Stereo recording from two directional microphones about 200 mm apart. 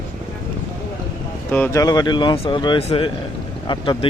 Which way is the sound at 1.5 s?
10° left (ahead or behind).